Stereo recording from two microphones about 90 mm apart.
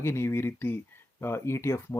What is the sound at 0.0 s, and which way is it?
Speech, 30° left (ahead or behind).